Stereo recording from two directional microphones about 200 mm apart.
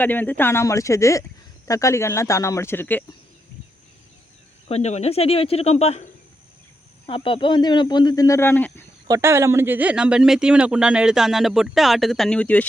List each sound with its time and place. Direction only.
0.0 s speech: 10° left (ahead or behind)
4.7 s speech: 35° left (ahead or behind)
7.1 s speech: 25° left (ahead or behind); by 8.9 s 10° left (ahead or behind)
9.0 s speech: 15° right (ahead or behind); by 12.6 s 5° left (ahead or behind)